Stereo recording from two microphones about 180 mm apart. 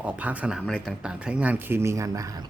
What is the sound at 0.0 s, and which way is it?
Speech, 10° right (ahead or behind).